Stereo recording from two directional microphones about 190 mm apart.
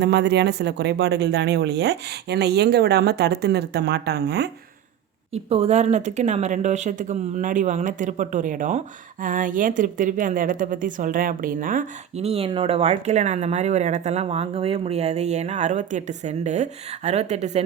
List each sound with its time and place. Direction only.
0.0 s speech: 60° right (ahead or behind)
5.3 s a woman's voice: 35° right (ahead or behind)